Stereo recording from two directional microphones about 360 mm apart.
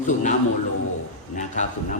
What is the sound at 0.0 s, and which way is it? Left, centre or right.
Speech, left.